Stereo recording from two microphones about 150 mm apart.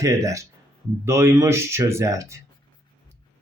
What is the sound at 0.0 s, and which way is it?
Speech, 20° right (ahead or behind).